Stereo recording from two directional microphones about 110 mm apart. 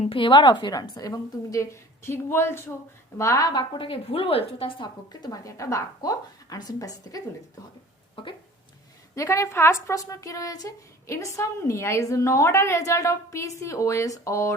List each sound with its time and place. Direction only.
0.1 s a woman's voice: 45° left (ahead or behind)
5.3 s a woman's voice: 30° left (ahead or behind)
8.1 s speech: 50° left (ahead or behind)
9.1 s a woman's voice: 30° left (ahead or behind)